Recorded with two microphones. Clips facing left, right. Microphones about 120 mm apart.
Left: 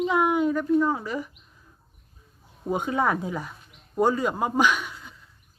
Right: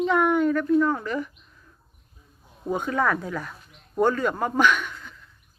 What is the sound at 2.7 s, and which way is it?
Speech, 15° left (ahead or behind).